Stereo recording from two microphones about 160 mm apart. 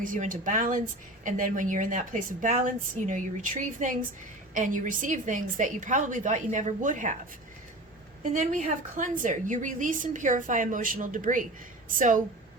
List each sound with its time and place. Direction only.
0.0 s a woman's voice: 55° right (ahead or behind)
8.2 s a woman's voice: 50° right (ahead or behind)